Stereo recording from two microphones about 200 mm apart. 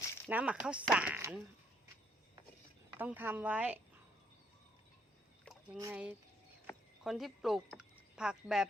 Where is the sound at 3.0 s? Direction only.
10° right (ahead or behind).